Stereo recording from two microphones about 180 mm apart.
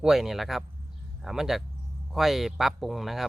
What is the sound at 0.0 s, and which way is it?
Speech, centre (ahead or behind).